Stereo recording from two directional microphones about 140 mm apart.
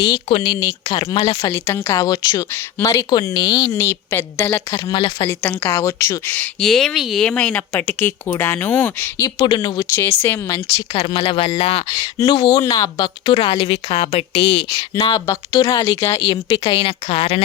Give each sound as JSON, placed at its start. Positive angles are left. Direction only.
{"t": 0.3, "sound": "speech", "side_deg": 40}
{"t": 1.5, "sound": "speech", "side_deg": 15}
{"t": 3.7, "sound": "a woman's voice", "side_deg": 20}
{"t": 4.9, "sound": "speech", "side_deg": 35}
{"t": 5.3, "sound": "a woman's voice", "side_deg": 15}
{"t": 9.4, "sound": "speech", "side_deg": 35}
{"t": 9.9, "sound": "a woman's voice", "side_deg": 15}
{"t": 10.9, "sound": "speech", "side_deg": 40}
{"t": 14.9, "sound": "speech", "side_deg": 25}
{"t": 16.5, "sound": "speech", "side_deg": 40}